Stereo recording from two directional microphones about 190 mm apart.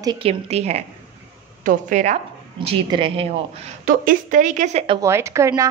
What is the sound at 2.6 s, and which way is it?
A woman's voice, 30° right (ahead or behind).